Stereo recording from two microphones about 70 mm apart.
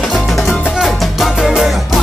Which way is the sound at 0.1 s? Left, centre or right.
Centre.